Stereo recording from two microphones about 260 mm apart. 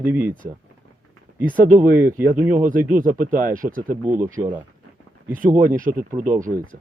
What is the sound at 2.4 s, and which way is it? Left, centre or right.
Speech, centre.